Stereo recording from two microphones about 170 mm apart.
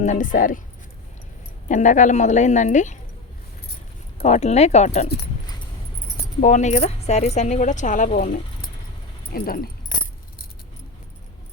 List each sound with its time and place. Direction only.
0.0 s speech: 45° left (ahead or behind)
1.6 s speech: 45° left (ahead or behind)
4.2 s speech: 40° left (ahead or behind)
5.1 s keys jangling: 70° left (ahead or behind)
6.4 s speech: 45° left (ahead or behind); by 9.6 s 60° left (ahead or behind)